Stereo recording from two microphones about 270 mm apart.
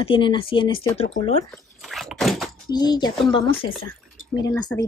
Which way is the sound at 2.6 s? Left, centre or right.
Centre.